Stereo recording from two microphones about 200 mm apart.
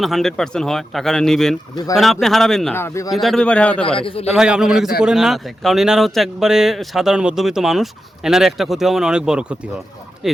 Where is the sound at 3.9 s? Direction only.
25° left (ahead or behind).